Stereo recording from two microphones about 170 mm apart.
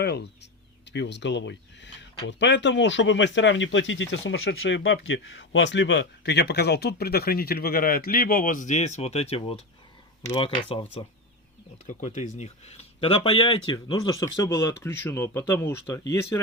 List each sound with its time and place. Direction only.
0.0 s speech: 75° left (ahead or behind)
0.9 s speech: 90° left; by 10.8 s 30° left (ahead or behind)
11.9 s speech: 45° left (ahead or behind); by 16.4 s 15° left (ahead or behind)